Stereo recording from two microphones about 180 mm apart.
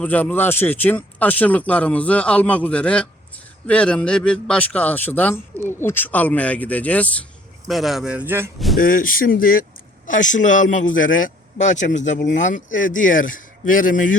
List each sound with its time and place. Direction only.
0.0 s a man's voice: 10° left (ahead or behind); by 8.4 s 10° right (ahead or behind)
8.5 s speech: centre (ahead or behind)
8.8 s a man's voice: 50° left (ahead or behind)